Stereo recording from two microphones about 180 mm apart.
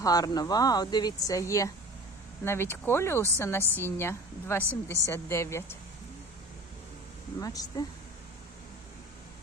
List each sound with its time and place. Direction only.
0.0 s speech: 20° left (ahead or behind)
7.3 s speech: 20° left (ahead or behind)